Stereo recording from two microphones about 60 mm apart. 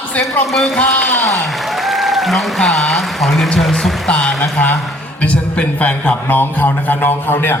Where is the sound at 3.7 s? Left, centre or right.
Centre.